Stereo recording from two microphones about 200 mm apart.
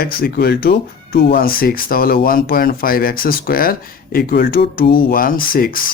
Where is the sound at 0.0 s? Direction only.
50° left (ahead or behind).